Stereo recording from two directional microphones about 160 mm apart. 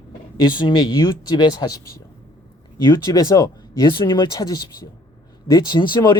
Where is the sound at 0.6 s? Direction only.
30° left (ahead or behind).